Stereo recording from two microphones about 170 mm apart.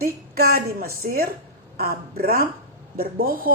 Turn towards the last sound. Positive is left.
turn(degrees=-60)  # may be behind; listen again after turning